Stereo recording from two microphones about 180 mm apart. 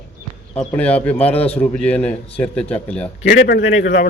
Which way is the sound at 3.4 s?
70° left (ahead or behind).